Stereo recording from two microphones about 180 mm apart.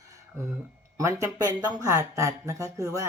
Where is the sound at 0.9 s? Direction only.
15° right (ahead or behind).